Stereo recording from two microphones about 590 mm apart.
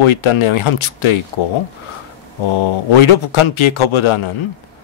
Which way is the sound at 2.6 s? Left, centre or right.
Left.